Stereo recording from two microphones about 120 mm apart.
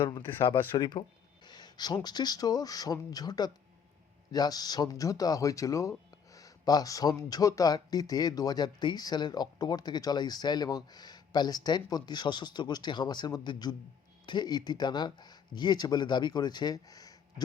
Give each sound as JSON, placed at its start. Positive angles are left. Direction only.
{"t": 0.0, "sound": "speech", "side_deg": 40}